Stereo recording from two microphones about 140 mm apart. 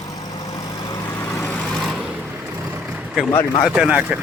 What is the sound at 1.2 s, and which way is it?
Vehicle, 15° left (ahead or behind).